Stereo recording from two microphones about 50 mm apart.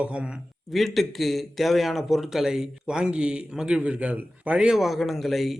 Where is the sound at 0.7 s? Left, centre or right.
Centre; by 4.7 s right.